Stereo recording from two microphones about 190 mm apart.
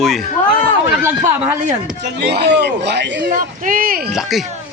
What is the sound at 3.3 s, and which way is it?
Speech, 45° right (ahead or behind).